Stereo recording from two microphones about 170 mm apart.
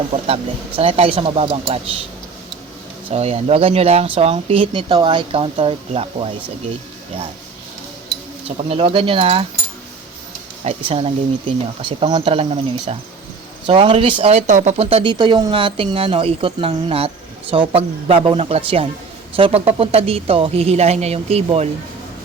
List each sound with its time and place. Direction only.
0.8 s speech: 35° right (ahead or behind)
3.1 s speech: 40° right (ahead or behind)
8.4 s speech: 35° right (ahead or behind)
10.6 s speech: 35° right (ahead or behind)